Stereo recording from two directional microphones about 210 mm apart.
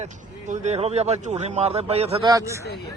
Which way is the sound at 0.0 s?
35° right (ahead or behind).